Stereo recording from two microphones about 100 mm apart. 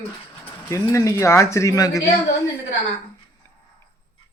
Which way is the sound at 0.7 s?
30° left (ahead or behind).